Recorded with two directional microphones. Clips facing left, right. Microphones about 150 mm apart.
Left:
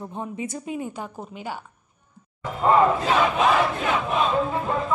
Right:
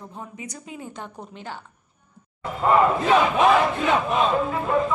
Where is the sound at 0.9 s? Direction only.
5° left (ahead or behind).